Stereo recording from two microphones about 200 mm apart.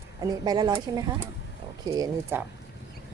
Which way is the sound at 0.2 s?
20° right (ahead or behind).